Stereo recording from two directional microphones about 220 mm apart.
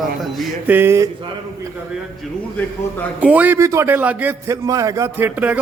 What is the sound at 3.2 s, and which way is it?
A man's voice, 5° right (ahead or behind).